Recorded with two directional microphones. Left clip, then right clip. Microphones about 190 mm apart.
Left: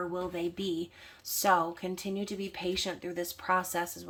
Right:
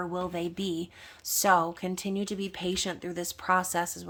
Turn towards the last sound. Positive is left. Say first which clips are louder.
# right 3 dB
turn(degrees=-30)  # may be behind; listen again after turning